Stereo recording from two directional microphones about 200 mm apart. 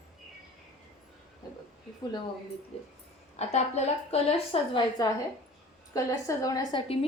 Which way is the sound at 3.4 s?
35° left (ahead or behind).